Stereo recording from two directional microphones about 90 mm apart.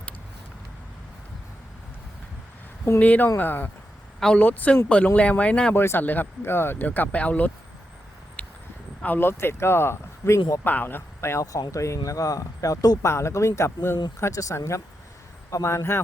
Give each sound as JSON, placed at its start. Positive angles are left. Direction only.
{"t": 3.0, "sound": "speech", "side_deg": 15}
{"t": 4.2, "sound": "speech", "side_deg": 10}
{"t": 5.7, "sound": "speech", "side_deg": 25}
{"t": 8.4, "sound": "a sound", "side_deg": 15}
{"t": 9.0, "sound": "speech", "side_deg": 25}
{"t": 13.1, "sound": "speech", "side_deg": 30}